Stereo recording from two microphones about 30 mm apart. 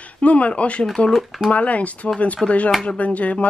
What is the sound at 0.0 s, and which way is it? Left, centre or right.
A woman's voice, left.